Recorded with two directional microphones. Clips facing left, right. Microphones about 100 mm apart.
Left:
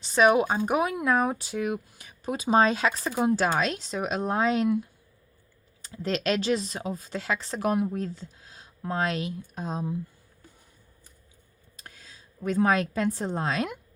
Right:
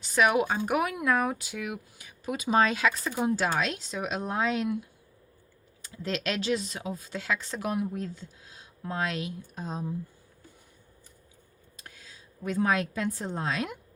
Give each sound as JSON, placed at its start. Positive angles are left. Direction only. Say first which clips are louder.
{"t": 0.0, "sound": "speech", "louder": "left 4 dB", "side_deg": 30}
{"t": 3.1, "sound": "a woman's voice", "louder": "left 3 dB", "side_deg": 45}
{"t": 6.0, "sound": "speech", "louder": "left 4 dB", "side_deg": 35}
{"t": 9.6, "sound": "speech", "louder": "left 3 dB", "side_deg": 65}
{"t": 11.8, "sound": "a sound", "louder": "left 1 dB", "side_deg": 35}
{"t": 12.4, "sound": "a woman's voice", "louder": "left 3 dB", "side_deg": 45}
{"t": 13.3, "sound": "a woman's voice", "louder": "left 3 dB", "side_deg": 45}